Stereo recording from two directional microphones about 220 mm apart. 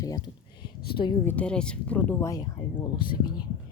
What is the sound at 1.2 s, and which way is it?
Speech, 10° left (ahead or behind).